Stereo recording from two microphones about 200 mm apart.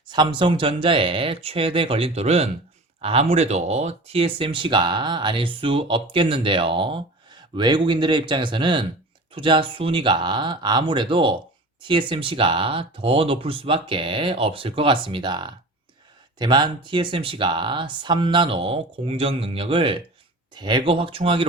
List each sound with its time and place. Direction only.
0.1 s speech: 25° right (ahead or behind)